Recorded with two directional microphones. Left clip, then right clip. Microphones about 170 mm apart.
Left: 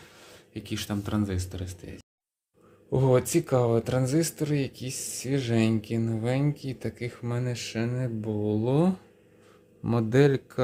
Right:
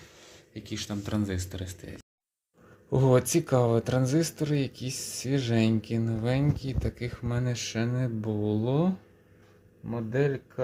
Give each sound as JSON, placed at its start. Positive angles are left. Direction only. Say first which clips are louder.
{"t": 0.0, "sound": "a sound", "louder": "left 1 dB", "side_deg": 20}
{"t": 1.0, "sound": "speech", "louder": "left 1 dB", "side_deg": 5}
{"t": 8.6, "sound": "speech", "louder": "left 5 dB", "side_deg": 20}
{"t": 9.8, "sound": "speech", "louder": "left 6 dB", "side_deg": 50}